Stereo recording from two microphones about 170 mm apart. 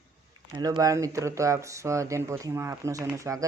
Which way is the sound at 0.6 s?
20° right (ahead or behind).